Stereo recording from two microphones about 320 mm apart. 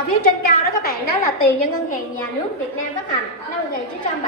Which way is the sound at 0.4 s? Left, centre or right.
Left.